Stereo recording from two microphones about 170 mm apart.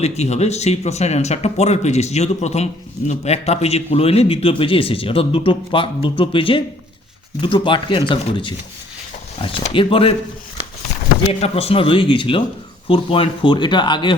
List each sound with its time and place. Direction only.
0.0 s a man's voice: 40° left (ahead or behind)
9.7 s a man's voice: 35° left (ahead or behind)
11.3 s a man's voice: 35° left (ahead or behind)